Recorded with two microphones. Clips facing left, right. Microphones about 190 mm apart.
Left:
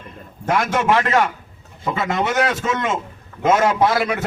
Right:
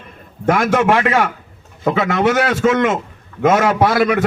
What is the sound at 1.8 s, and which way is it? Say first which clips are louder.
A man's voice: right 6 dB; 60° right (ahead or behind).